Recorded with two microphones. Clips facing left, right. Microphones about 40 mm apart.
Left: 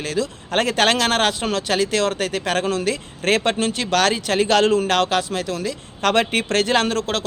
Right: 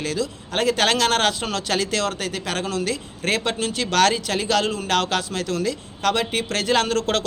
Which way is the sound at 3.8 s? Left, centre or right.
Centre.